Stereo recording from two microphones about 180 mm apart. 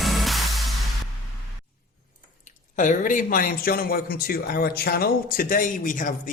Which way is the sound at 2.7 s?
45° left (ahead or behind).